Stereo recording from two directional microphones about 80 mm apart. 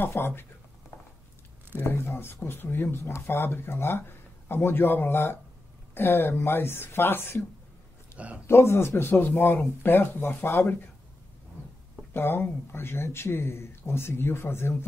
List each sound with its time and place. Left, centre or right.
0.0 s speech: left
1.8 s speech: left
8.2 s speech: centre
8.5 s speech: left
12.1 s speech: left